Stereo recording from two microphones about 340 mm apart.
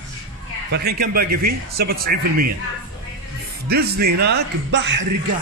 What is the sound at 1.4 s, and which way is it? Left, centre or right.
Speech, right.